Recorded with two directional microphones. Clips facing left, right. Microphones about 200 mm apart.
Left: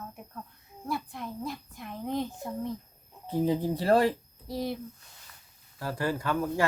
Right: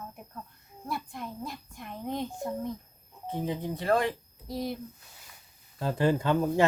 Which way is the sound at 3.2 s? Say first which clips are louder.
Left 5 dB; 35° left (ahead or behind).